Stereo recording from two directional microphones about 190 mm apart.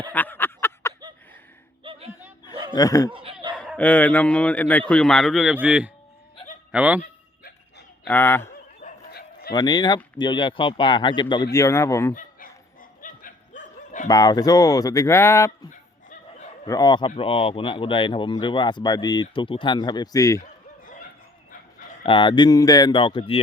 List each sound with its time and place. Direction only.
0.0 s a sound: 10° left (ahead or behind)
1.8 s a sound: 30° right (ahead or behind)
2.7 s speech: 15° left (ahead or behind)
3.1 s a sound: 25° right (ahead or behind)
3.8 s a man's voice: 10° left (ahead or behind); by 7.0 s 10° right (ahead or behind)
8.0 s speech: 10° left (ahead or behind)
8.8 s bow-wow: 40° left (ahead or behind)
9.5 s speech: 20° left (ahead or behind)
12.1 s dog: 45° left (ahead or behind)
14.1 s speech: 20° left (ahead or behind)
16.6 s speech: 20° left (ahead or behind)
22.0 s speech: 25° left (ahead or behind)